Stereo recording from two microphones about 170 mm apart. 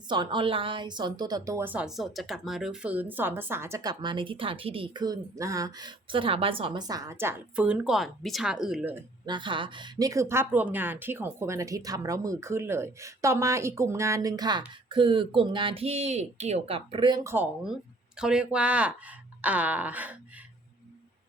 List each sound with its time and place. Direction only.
0.1 s a woman's voice: 25° right (ahead or behind); by 9.0 s 10° right (ahead or behind)
9.2 s a woman's voice: 25° right (ahead or behind); by 20.1 s 10° right (ahead or behind)